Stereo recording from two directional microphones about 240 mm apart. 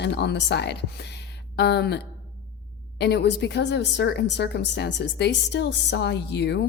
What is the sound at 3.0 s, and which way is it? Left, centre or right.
A woman's voice, left.